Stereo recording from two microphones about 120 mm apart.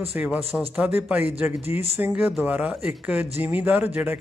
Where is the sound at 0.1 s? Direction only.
15° right (ahead or behind).